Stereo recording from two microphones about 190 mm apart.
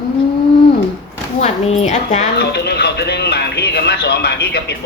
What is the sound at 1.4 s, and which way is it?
Speech, 35° left (ahead or behind).